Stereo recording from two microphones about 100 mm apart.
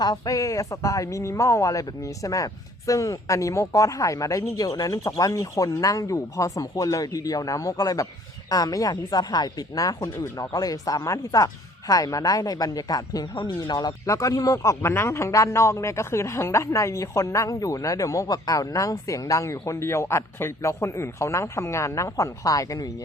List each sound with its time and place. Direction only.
0.0 s speech: 40° left (ahead or behind)